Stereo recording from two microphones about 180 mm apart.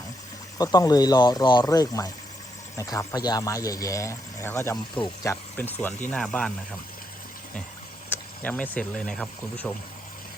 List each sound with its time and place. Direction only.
0.6 s speech: 20° left (ahead or behind); by 6.5 s 5° left (ahead or behind)
8.1 s speech: 10° left (ahead or behind)